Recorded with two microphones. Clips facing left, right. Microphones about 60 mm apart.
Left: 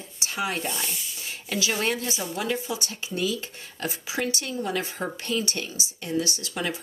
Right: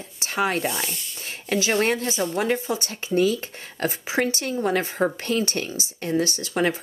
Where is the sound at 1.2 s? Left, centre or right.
Right.